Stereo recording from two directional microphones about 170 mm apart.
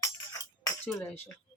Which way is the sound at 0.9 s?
10° left (ahead or behind).